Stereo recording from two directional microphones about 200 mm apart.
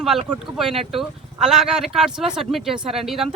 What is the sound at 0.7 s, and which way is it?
Speech, 30° right (ahead or behind).